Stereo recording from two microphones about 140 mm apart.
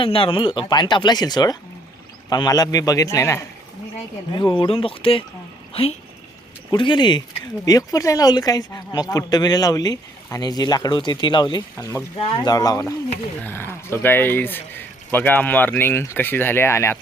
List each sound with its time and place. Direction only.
0.0 s speech: 40° left (ahead or behind)
6.7 s speech: 35° left (ahead or behind)
12.2 s speech: 35° left (ahead or behind); by 17.0 s 20° left (ahead or behind)